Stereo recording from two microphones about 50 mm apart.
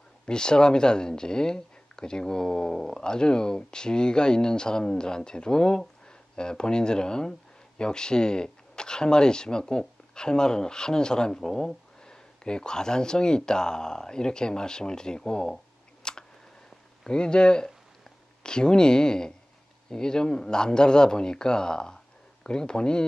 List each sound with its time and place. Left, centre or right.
0.3 s speech: centre
16.0 s a sound: centre
17.0 s speech: centre